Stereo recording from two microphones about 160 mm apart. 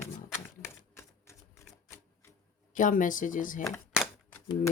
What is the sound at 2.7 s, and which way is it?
Speech, 55° left (ahead or behind).